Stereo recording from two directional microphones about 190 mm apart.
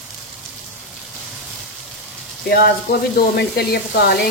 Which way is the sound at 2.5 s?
50° left (ahead or behind).